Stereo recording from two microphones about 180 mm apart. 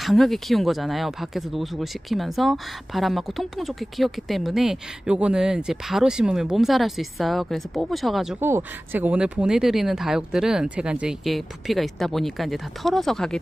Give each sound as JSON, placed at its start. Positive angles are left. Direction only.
{"t": 0.0, "sound": "speech", "side_deg": 0}